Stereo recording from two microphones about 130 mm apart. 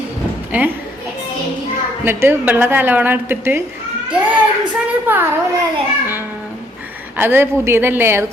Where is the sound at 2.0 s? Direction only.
15° right (ahead or behind).